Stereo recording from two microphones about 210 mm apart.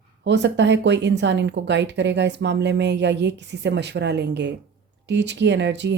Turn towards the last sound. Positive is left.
turn(degrees=-55)  # may be behind; listen again after turning